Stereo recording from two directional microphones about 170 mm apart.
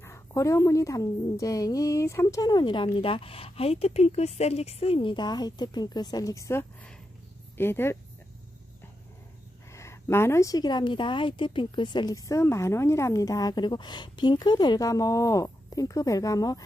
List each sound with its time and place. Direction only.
0.0 s a woman's voice: 15° left (ahead or behind)
9.7 s a woman's voice: 15° left (ahead or behind)